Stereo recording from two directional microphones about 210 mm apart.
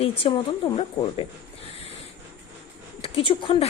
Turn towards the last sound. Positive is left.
turn(degrees=25)  # may be behind; listen again after turning